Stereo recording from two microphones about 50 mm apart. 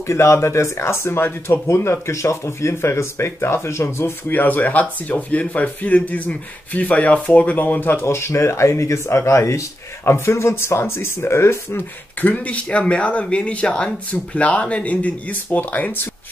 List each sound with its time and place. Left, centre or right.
0.0 s speech: left
1.9 s speech: left
4.3 s speech: left
8.1 s speech: left
12.2 s speech: left